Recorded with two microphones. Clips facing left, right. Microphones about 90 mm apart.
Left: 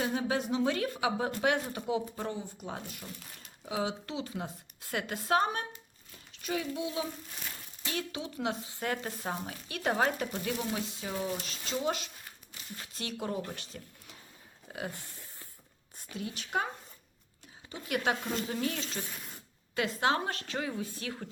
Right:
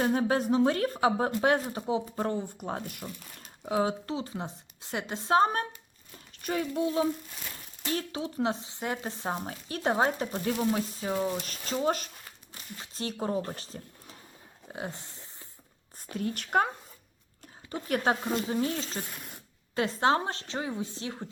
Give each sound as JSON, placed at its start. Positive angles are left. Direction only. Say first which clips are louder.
{"t": 0.0, "sound": "speech", "louder": "right 5 dB", "side_deg": -45}
{"t": 2.2, "sound": "a woman's voice", "louder": "right 6 dB", "side_deg": -50}
{"t": 6.3, "sound": "speech", "louder": "right 4 dB", "side_deg": -50}
{"t": 14.7, "sound": "a sound", "louder": "right 2 dB", "side_deg": -25}
{"t": 16.0, "sound": "speech", "louder": "right 6 dB", "side_deg": -45}
{"t": 17.7, "sound": "speech", "louder": "right 4 dB", "side_deg": -40}
{"t": 18.3, "sound": "a woman's voice", "louder": "right 4 dB", "side_deg": -25}